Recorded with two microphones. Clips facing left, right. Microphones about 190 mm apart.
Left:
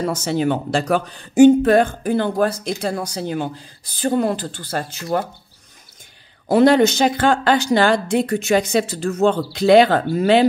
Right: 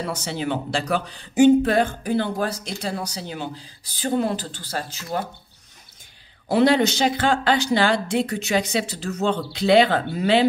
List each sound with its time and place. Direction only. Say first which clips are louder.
0.0 s speech: left 7 dB; 45° left (ahead or behind)
6.5 s speech: left 5 dB; 50° left (ahead or behind)